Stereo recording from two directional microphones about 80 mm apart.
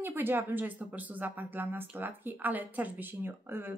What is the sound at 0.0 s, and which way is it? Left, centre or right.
A woman's voice, right.